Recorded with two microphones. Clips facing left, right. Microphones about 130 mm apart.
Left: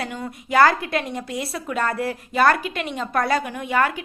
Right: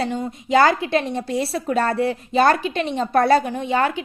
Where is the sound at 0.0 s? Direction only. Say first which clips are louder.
Right 6 dB; 25° right (ahead or behind).